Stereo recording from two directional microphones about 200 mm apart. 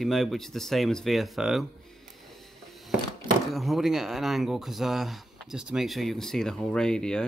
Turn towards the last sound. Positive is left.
turn(degrees=5)  # may be behind; listen again after turning